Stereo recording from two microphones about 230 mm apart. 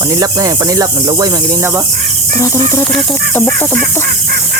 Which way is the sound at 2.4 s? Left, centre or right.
Centre.